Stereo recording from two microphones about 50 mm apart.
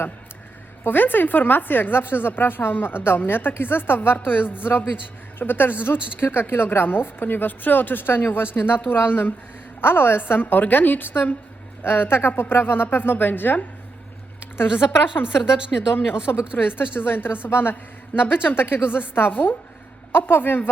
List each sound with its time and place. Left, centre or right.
0.9 s a woman's voice: left
15.4 s speech: centre
16.3 s speech: left
16.6 s a woman's voice: left